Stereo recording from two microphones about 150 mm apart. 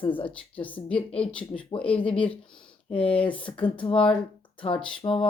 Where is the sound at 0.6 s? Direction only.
10° left (ahead or behind).